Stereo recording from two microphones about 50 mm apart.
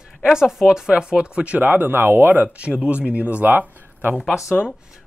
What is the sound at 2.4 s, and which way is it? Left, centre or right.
Speech, right.